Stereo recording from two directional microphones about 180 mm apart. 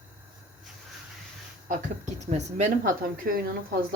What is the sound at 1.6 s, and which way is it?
A woman's voice, 45° right (ahead or behind).